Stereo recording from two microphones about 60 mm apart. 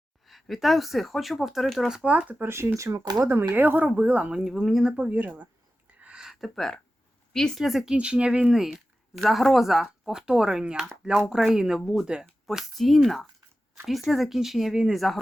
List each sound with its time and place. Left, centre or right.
0.3 s speech: centre
2.0 s speech: right
2.4 s speech: right
3.2 s speech: right
4.4 s speech: centre
4.9 s speech: right
6.0 s a sound: centre
7.3 s speech: centre
7.9 s speech: centre
8.6 s speech: centre
14.9 s speech: centre